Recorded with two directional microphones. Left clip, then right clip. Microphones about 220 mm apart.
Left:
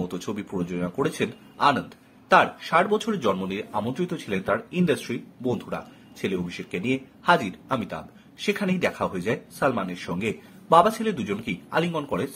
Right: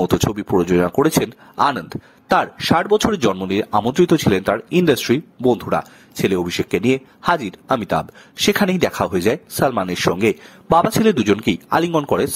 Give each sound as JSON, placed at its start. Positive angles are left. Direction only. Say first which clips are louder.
{"t": 0.3, "sound": "speech", "louder": "right 13 dB", "side_deg": -50}